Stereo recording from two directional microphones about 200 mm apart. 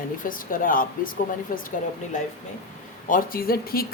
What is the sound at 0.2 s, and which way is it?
Speech, 45° left (ahead or behind).